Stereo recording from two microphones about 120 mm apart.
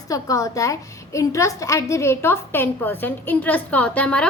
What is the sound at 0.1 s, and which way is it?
A woman's voice, 30° left (ahead or behind).